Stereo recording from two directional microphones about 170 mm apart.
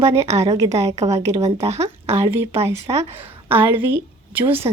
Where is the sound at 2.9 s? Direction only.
25° right (ahead or behind).